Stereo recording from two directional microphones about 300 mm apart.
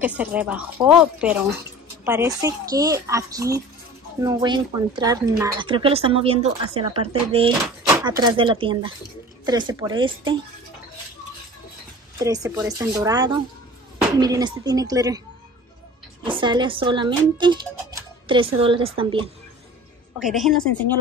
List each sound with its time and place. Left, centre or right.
0.2 s speech: centre
12.2 s speech: centre
16.3 s speech: centre
20.2 s speech: centre